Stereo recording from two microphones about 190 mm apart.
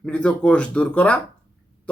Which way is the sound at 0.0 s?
5° left (ahead or behind).